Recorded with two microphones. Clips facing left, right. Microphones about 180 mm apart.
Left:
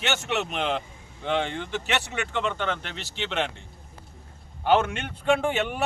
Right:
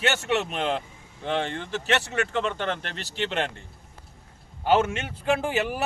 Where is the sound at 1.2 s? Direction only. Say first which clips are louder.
Left 1 dB; centre (ahead or behind).